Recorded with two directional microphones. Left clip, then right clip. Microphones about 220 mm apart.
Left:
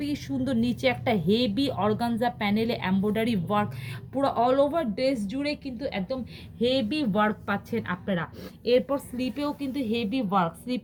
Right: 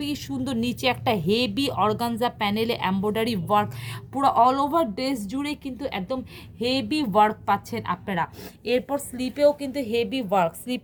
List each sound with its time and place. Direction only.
0.0 s a woman's voice: 55° right (ahead or behind)